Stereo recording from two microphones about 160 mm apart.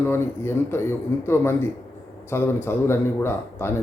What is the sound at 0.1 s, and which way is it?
Speech, 15° left (ahead or behind).